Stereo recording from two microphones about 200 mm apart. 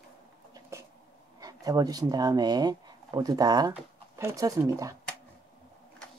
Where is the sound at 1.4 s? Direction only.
20° right (ahead or behind).